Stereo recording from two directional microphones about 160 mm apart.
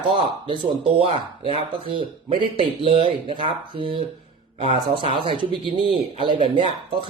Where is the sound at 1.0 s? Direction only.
35° right (ahead or behind).